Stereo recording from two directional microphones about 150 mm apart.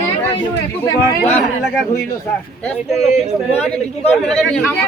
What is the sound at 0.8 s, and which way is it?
Speech, 10° left (ahead or behind).